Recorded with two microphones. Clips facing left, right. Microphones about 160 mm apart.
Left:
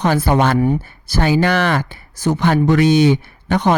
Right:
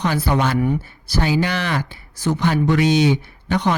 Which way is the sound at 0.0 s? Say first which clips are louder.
Left 4 dB; 50° left (ahead or behind).